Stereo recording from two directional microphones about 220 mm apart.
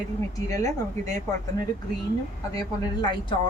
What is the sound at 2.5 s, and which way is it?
Speech, 20° left (ahead or behind).